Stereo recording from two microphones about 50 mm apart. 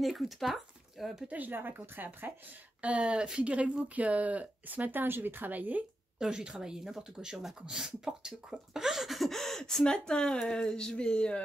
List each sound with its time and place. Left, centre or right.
0.0 s speech: centre
1.3 s speech: right
2.8 s speech: right
3.5 s speech: right
6.1 s speech: centre